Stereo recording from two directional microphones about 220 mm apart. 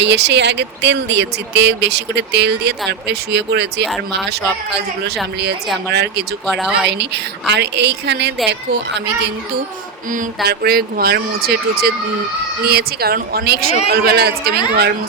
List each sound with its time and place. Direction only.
0.0 s speech: 50° right (ahead or behind)
6.4 s speech: centre (ahead or behind)
7.0 s speech: 50° right (ahead or behind)
10.1 s speech: 40° right (ahead or behind)